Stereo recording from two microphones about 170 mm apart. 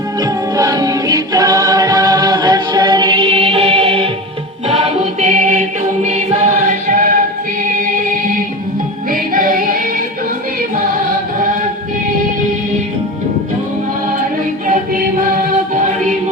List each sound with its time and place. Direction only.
0.5 s choir: 20° right (ahead or behind); by 4.1 s 40° right (ahead or behind)
4.7 s music: 40° right (ahead or behind)
5.5 s music: 40° right (ahead or behind); by 9.7 s 55° right (ahead or behind)